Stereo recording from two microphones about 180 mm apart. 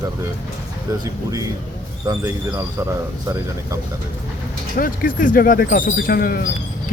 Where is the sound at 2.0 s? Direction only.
20° right (ahead or behind).